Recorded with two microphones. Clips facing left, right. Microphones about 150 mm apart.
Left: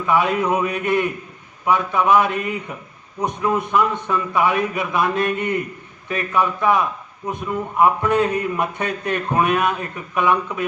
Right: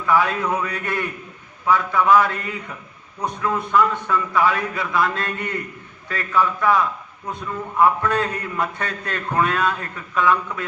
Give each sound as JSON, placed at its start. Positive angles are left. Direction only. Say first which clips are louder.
{"t": 0.0, "sound": "a man's voice", "louder": "left 1 dB", "side_deg": 20}